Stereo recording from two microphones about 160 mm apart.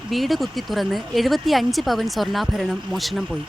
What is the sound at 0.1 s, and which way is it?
Speech, centre (ahead or behind).